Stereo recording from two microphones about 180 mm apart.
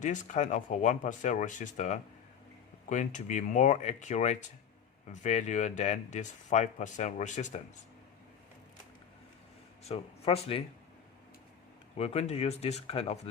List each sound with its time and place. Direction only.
0.0 s speech: 45° left (ahead or behind)
9.9 s speech: 35° left (ahead or behind)
11.9 s speech: 35° left (ahead or behind)